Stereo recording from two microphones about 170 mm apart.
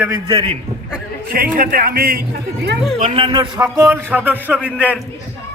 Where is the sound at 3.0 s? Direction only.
30° right (ahead or behind).